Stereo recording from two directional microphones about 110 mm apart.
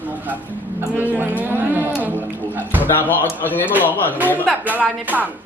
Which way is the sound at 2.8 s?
15° left (ahead or behind).